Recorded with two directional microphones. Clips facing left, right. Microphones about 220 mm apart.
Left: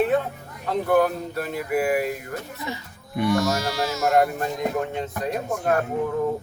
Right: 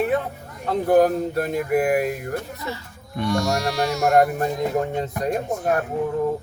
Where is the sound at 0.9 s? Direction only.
40° right (ahead or behind).